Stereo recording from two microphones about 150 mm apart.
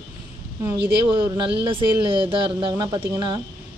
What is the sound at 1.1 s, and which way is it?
A woman's voice, 35° right (ahead or behind).